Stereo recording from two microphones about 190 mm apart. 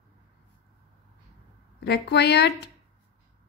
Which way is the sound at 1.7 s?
65° left (ahead or behind).